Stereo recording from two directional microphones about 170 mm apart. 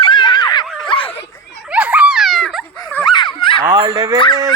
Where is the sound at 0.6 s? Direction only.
5° left (ahead or behind).